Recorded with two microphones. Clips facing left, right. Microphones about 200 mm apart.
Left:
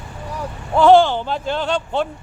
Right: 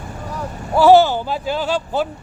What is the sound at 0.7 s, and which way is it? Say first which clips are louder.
Speech: right 1 dB; 5° right (ahead or behind).